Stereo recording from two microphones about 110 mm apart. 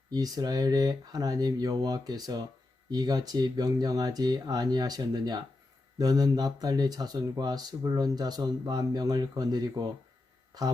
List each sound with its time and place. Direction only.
0.1 s speech: 35° right (ahead or behind)